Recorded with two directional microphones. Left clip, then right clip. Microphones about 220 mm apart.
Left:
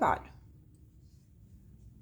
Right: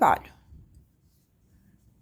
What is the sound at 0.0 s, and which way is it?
Speech, 20° right (ahead or behind).